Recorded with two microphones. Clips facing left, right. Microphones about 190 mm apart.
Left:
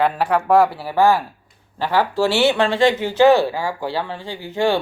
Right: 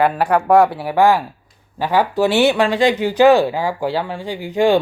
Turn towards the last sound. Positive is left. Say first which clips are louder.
# right 5 dB
turn(degrees=-15)  # may be behind; listen again after turning